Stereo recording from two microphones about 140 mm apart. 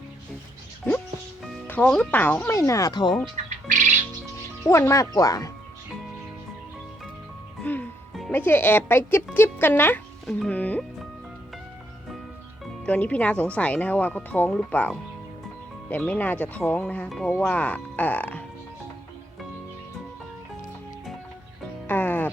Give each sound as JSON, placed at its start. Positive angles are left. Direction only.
{"t": 1.6, "sound": "speech", "side_deg": 10}
{"t": 3.3, "sound": "music", "side_deg": -65}
{"t": 4.6, "sound": "speech", "side_deg": 20}
{"t": 7.6, "sound": "music", "side_deg": 15}
{"t": 8.3, "sound": "speech", "side_deg": 15}
{"t": 12.8, "sound": "speech", "side_deg": 10}
{"t": 21.8, "sound": "music", "side_deg": 15}